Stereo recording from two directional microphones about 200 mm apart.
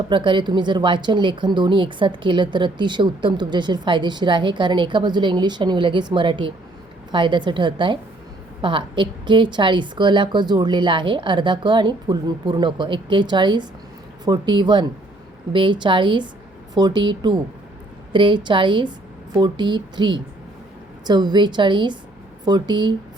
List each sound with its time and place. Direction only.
0.1 s a woman's voice: 25° right (ahead or behind)